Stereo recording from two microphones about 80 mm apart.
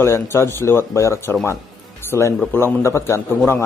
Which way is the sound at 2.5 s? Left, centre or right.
Left.